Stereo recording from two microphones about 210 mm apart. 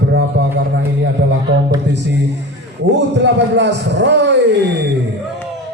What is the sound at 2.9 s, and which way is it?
A man's voice, 55° right (ahead or behind).